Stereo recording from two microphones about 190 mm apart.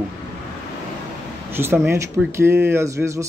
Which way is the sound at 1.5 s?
15° right (ahead or behind).